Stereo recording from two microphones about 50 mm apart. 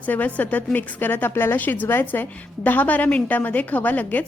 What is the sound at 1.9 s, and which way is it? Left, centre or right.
Speech, left.